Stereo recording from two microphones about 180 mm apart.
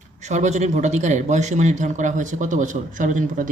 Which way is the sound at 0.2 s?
40° right (ahead or behind).